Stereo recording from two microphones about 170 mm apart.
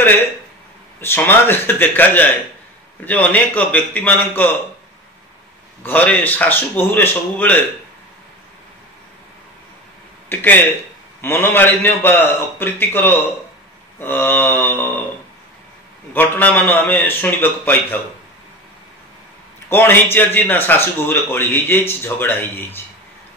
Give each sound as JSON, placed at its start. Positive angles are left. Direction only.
{"t": 1.0, "sound": "speech", "side_deg": 15}
{"t": 5.8, "sound": "speech", "side_deg": 10}
{"t": 10.3, "sound": "speech", "side_deg": 10}
{"t": 16.1, "sound": "speech", "side_deg": 10}
{"t": 19.7, "sound": "speech", "side_deg": 15}